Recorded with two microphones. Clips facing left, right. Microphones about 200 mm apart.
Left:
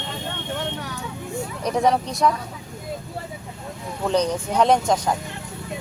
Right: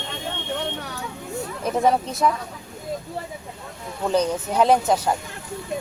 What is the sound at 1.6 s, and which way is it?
Speech, 5° right (ahead or behind).